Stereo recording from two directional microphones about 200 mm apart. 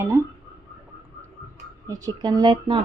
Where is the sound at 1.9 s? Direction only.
20° right (ahead or behind).